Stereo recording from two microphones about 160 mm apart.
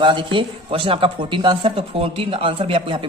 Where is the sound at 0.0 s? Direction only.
30° right (ahead or behind).